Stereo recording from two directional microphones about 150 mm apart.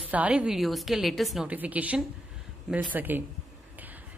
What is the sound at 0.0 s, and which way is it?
A woman's voice, 10° right (ahead or behind).